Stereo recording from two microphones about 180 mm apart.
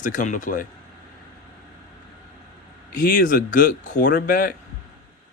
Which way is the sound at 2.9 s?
50° left (ahead or behind).